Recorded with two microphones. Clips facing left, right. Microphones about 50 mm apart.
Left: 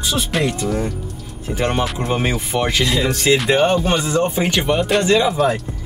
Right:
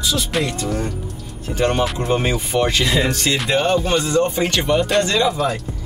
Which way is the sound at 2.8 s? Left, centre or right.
Centre.